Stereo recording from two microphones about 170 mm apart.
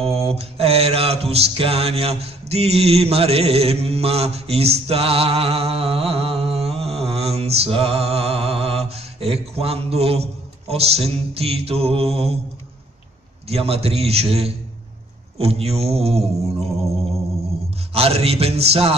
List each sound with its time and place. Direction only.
0.0 s mantra: 35° right (ahead or behind)
13.5 s a man's voice: 35° right (ahead or behind)
17.9 s a man's voice: 35° right (ahead or behind)